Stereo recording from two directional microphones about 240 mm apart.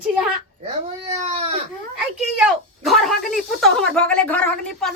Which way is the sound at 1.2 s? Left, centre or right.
Right.